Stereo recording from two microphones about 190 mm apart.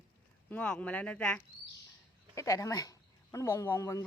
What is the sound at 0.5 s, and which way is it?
A woman's voice, 5° left (ahead or behind).